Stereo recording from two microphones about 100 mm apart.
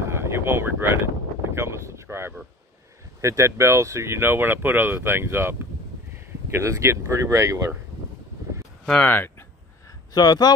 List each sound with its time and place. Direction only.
0.0 s speech: 25° right (ahead or behind)
8.8 s speech: 5° left (ahead or behind)
10.1 s speech: 40° left (ahead or behind)